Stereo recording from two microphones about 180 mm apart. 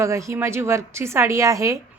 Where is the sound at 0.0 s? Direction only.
15° right (ahead or behind).